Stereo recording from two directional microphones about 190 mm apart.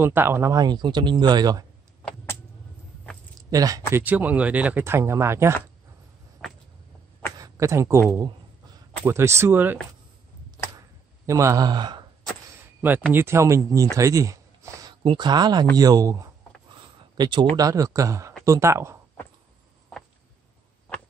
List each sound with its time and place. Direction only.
0.0 s speech: 10° right (ahead or behind)
3.4 s speech: 20° right (ahead or behind)
7.3 s speech: 15° right (ahead or behind)
11.2 s speech: 15° right (ahead or behind)
13.1 s speech: 15° right (ahead or behind)
16.7 s a sound: 25° right (ahead or behind)
17.6 s speech: 15° right (ahead or behind)